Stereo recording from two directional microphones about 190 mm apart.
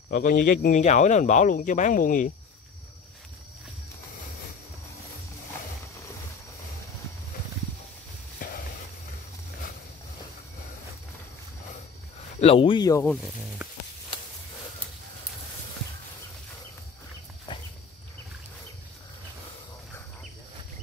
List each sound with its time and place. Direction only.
0.1 s speech: 45° left (ahead or behind)
8.4 s a sound: 45° left (ahead or behind)
12.4 s speech: 30° left (ahead or behind)
13.0 s speech: 5° left (ahead or behind)
13.6 s stir: 5° right (ahead or behind)
17.5 s a sound: 25° left (ahead or behind)